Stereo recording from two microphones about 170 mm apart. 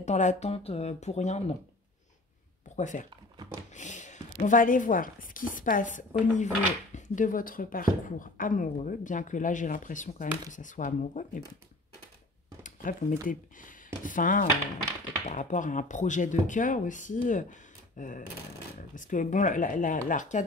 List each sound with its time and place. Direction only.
0.0 s speech: 45° left (ahead or behind)
2.7 s speech: 45° left (ahead or behind)
12.6 s speech: 50° left (ahead or behind)